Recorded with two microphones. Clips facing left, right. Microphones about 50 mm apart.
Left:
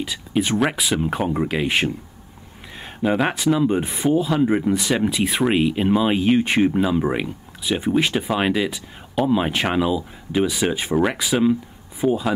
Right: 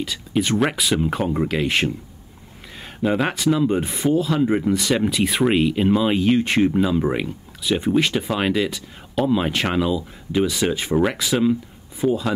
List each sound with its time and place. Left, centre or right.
0.0 s speech: centre
3.0 s speech: centre